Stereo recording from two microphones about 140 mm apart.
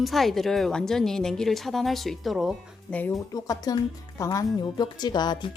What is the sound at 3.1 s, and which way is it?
Speech, 25° left (ahead or behind).